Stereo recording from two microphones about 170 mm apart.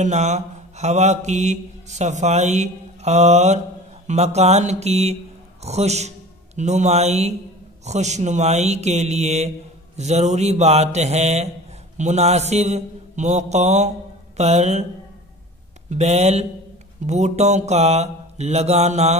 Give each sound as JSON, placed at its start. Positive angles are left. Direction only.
{"t": 0.0, "sound": "mantra", "side_deg": -45}
{"t": 5.6, "sound": "a man's voice", "side_deg": -40}
{"t": 7.8, "sound": "mantra", "side_deg": -40}
{"t": 15.9, "sound": "mantra", "side_deg": -40}